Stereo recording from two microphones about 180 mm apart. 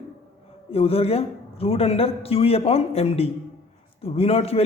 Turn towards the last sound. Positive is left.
turn(degrees=35)  # may be behind; listen again after turning